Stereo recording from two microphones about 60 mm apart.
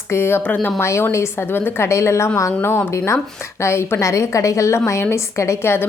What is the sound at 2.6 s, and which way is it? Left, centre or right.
A woman's voice, left.